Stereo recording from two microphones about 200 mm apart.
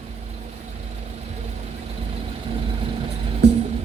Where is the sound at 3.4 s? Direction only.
60° right (ahead or behind).